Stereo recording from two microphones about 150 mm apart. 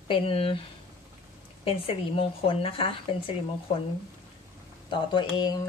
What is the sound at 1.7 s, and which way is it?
Speech, 35° left (ahead or behind).